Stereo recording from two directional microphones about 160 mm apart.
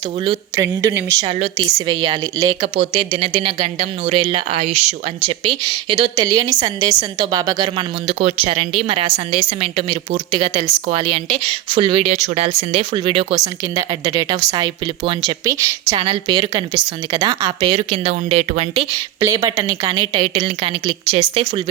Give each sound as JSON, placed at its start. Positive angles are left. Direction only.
{"t": 0.5, "sound": "a woman's voice", "side_deg": -20}
{"t": 2.7, "sound": "a woman's voice", "side_deg": -35}
{"t": 15.4, "sound": "a woman's voice", "side_deg": -20}
{"t": 16.0, "sound": "a woman's voice", "side_deg": -35}
{"t": 17.7, "sound": "a woman's voice", "side_deg": -40}
{"t": 18.9, "sound": "a woman's voice", "side_deg": -20}